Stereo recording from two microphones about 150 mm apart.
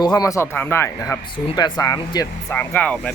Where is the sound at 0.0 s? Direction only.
25° left (ahead or behind).